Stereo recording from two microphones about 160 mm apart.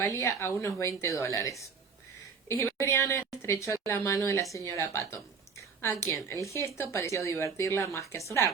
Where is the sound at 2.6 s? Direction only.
15° left (ahead or behind).